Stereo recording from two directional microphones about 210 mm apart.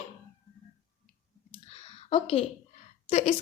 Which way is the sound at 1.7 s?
30° left (ahead or behind).